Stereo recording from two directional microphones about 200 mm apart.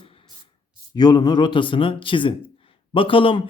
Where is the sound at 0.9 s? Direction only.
20° left (ahead or behind).